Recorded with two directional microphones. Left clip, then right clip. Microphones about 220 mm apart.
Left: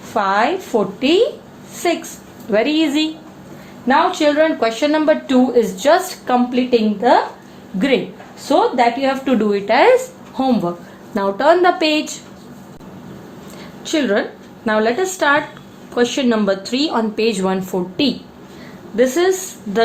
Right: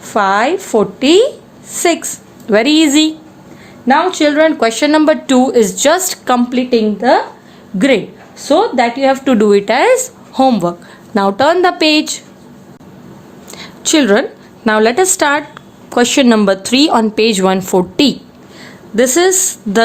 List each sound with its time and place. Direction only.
0.1 s speech: 50° right (ahead or behind)
13.5 s a woman's voice: 45° right (ahead or behind)